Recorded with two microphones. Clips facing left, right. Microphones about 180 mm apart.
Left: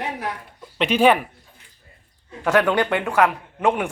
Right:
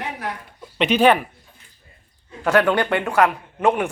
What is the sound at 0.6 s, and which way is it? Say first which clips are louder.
Speech: right 1 dB; 5° left (ahead or behind).